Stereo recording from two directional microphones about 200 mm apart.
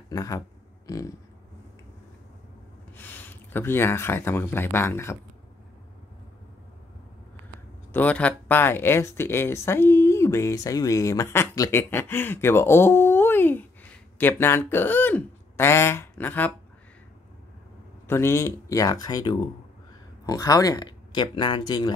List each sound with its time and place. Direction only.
0.1 s speech: 15° left (ahead or behind)
0.8 s a sound: 15° left (ahead or behind)
3.0 s speech: 10° left (ahead or behind)
7.9 s speech: 5° left (ahead or behind)
18.0 s speech: 10° left (ahead or behind)